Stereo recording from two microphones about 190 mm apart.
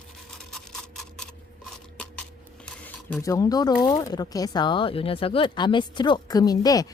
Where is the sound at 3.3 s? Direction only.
20° left (ahead or behind).